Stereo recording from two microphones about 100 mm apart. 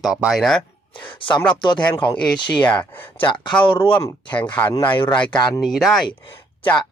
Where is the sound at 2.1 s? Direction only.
10° left (ahead or behind).